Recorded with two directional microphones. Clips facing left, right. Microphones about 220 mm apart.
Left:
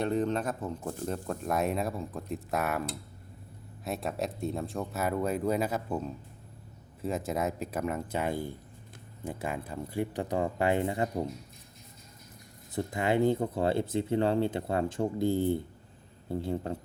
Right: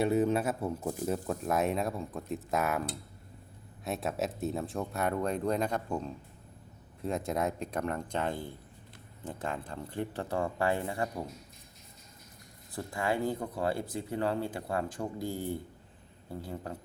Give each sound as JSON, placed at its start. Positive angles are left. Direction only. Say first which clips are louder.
{"t": 0.0, "sound": "speech", "louder": "right 2 dB", "side_deg": -5}
{"t": 3.8, "sound": "speech", "louder": "even", "side_deg": 0}
{"t": 12.7, "sound": "speech", "louder": "left 4 dB", "side_deg": 20}